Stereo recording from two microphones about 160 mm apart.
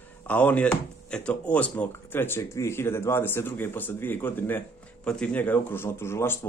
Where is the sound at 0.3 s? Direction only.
10° left (ahead or behind).